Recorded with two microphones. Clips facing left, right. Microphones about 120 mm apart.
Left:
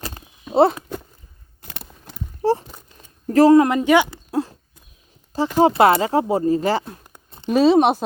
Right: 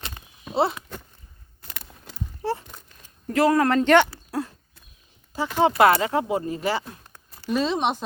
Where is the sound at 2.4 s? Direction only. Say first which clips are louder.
Left 9 dB; 40° left (ahead or behind).